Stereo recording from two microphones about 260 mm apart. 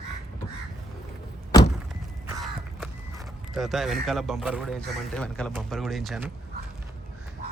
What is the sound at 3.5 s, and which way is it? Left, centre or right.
Speech, centre.